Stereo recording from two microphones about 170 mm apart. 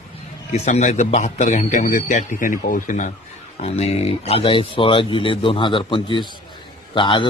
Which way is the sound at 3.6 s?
35° left (ahead or behind).